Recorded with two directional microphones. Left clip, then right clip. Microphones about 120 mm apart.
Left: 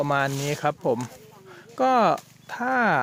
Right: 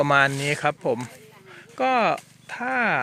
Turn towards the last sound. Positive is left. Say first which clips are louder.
# left 1 dB
turn(degrees=40)  # may be behind; listen again after turning